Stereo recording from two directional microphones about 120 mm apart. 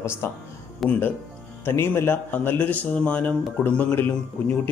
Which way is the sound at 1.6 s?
20° left (ahead or behind).